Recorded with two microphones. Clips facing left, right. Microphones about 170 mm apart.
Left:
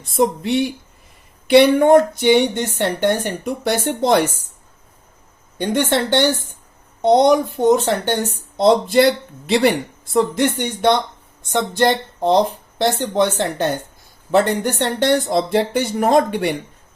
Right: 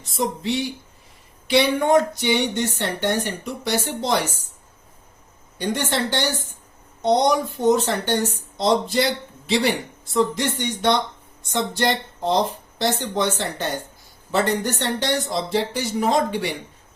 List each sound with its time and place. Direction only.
0.0 s a woman's voice: 55° left (ahead or behind)
5.5 s a woman's voice: 60° left (ahead or behind)